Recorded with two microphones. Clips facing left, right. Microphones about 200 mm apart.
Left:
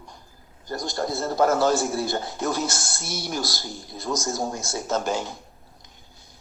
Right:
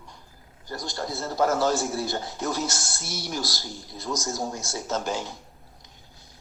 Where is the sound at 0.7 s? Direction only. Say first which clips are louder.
Left 5 dB; 45° left (ahead or behind).